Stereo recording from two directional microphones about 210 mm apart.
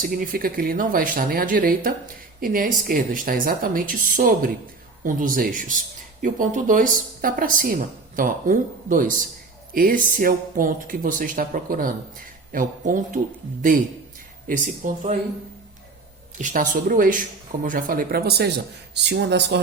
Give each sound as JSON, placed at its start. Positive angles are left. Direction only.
{"t": 0.0, "sound": "speech", "side_deg": -40}
{"t": 14.8, "sound": "speech", "side_deg": -35}
{"t": 16.4, "sound": "speech", "side_deg": -40}